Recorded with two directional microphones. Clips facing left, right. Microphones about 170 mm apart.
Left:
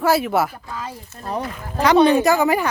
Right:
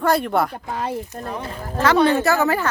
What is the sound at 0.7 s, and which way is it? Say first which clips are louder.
Speech: right 5 dB; 60° right (ahead or behind).